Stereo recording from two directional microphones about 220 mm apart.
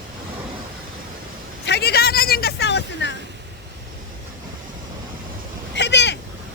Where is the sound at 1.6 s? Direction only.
50° left (ahead or behind).